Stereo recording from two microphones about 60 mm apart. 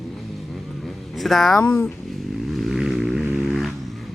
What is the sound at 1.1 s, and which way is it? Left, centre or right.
Speech, centre.